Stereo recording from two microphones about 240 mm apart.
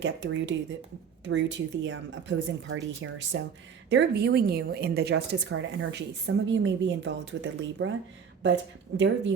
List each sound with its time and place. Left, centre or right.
0.0 s a woman's voice: right